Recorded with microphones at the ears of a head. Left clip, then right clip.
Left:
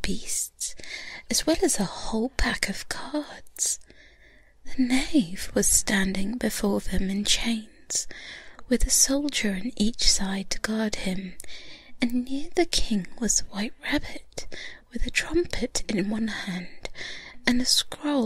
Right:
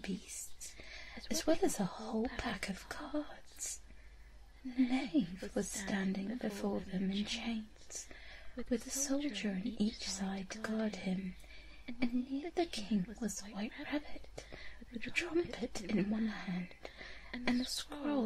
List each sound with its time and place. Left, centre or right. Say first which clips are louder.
0.0 s a woman's voice: left 14 dB; left